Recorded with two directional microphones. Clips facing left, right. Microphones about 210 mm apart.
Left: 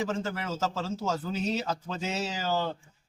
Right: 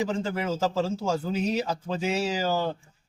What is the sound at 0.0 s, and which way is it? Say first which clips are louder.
A man's voice: right 4 dB; 15° right (ahead or behind).